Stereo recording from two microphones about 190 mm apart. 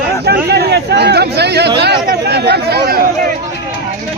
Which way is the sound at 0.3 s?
55° right (ahead or behind).